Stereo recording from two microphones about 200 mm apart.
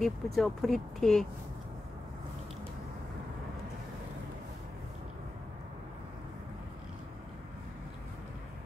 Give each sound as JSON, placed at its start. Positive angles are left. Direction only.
{"t": 0.0, "sound": "speech", "side_deg": 0}